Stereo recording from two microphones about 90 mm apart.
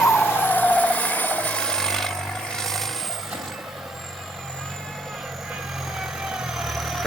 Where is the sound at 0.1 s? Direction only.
25° left (ahead or behind); by 2.9 s 5° left (ahead or behind).